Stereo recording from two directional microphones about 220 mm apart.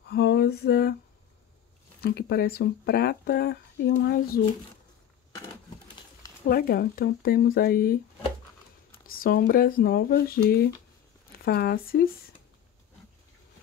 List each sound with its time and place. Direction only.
0.0 s a sound: 50° left (ahead or behind)
2.0 s speech: 45° left (ahead or behind)
6.4 s speech: 45° left (ahead or behind)
9.0 s speech: 40° left (ahead or behind)